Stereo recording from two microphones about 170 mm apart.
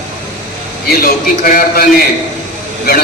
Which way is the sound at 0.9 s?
60° left (ahead or behind).